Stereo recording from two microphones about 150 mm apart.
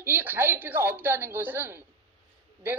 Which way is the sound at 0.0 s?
15° right (ahead or behind).